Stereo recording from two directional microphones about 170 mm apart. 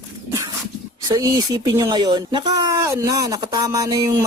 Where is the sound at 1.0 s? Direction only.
20° right (ahead or behind).